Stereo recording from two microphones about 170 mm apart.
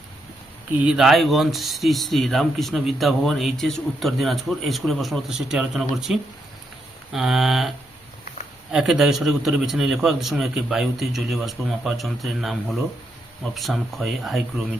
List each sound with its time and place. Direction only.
0.9 s speech: centre (ahead or behind)
8.7 s speech: 5° right (ahead or behind)